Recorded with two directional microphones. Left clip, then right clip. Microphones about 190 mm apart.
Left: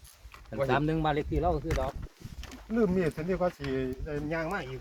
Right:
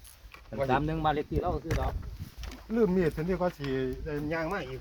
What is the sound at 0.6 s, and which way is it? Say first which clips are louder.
Speech: even; 55° left (ahead or behind).